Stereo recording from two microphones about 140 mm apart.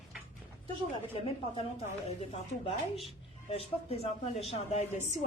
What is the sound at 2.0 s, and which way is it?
A woman's voice, 50° left (ahead or behind).